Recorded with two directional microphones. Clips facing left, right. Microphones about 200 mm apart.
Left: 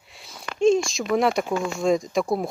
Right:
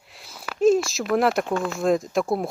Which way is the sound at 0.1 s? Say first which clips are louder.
Even; centre (ahead or behind).